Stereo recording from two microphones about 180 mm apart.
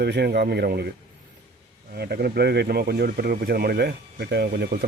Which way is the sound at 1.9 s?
60° right (ahead or behind).